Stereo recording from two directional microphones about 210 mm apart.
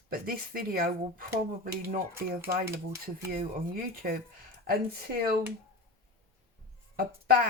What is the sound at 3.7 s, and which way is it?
Speech, 45° right (ahead or behind).